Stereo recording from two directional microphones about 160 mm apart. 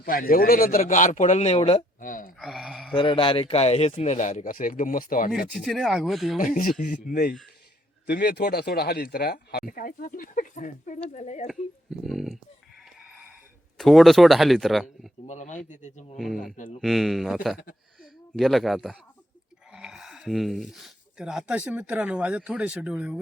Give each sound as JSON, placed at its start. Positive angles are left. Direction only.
{"t": 0.0, "sound": "speech", "side_deg": 65}
{"t": 0.8, "sound": "speech", "side_deg": 55}
{"t": 2.0, "sound": "speech", "side_deg": 60}
{"t": 2.4, "sound": "speech", "side_deg": -5}
{"t": 2.9, "sound": "speech", "side_deg": 30}
{"t": 5.5, "sound": "speech", "side_deg": 0}
{"t": 6.4, "sound": "speech", "side_deg": 60}
{"t": 8.0, "sound": "speech", "side_deg": 90}
{"t": 11.4, "sound": "speech", "side_deg": 0}
{"t": 13.0, "sound": "a sound", "side_deg": -5}
{"t": 13.7, "sound": "speech", "side_deg": 0}
{"t": 15.3, "sound": "speech", "side_deg": 50}
{"t": 16.1, "sound": "speech", "side_deg": 0}